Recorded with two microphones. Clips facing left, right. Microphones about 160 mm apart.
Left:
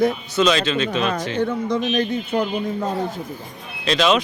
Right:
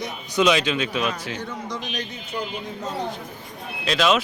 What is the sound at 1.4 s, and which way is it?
A man's voice, 55° left (ahead or behind).